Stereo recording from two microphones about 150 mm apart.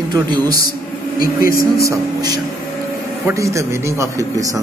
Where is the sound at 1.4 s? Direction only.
75° left (ahead or behind).